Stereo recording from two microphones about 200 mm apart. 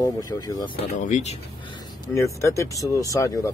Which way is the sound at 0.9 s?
35° left (ahead or behind).